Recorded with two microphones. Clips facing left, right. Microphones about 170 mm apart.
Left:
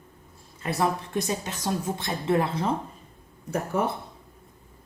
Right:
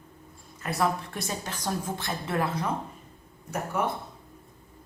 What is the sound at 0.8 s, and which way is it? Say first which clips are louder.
A woman's voice: left 2 dB; 20° left (ahead or behind).